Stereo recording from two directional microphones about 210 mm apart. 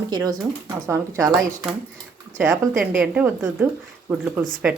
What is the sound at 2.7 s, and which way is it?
Speech, centre (ahead or behind).